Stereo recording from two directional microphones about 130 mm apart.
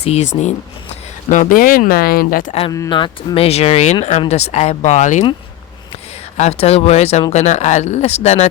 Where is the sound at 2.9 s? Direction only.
40° left (ahead or behind); by 5.2 s 65° left (ahead or behind).